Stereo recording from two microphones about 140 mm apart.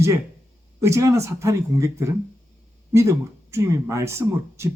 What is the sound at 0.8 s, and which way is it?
Speech, 20° right (ahead or behind).